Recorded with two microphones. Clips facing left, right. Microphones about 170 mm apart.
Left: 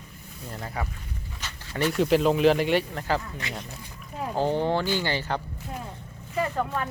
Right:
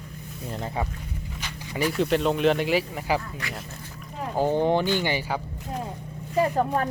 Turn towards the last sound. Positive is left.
turn(degrees=-40)  # may be behind; listen again after turning